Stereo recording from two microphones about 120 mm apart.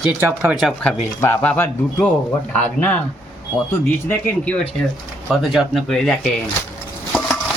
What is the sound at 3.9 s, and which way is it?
Speech, 20° left (ahead or behind).